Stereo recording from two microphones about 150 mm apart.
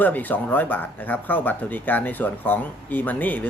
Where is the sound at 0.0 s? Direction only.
10° left (ahead or behind).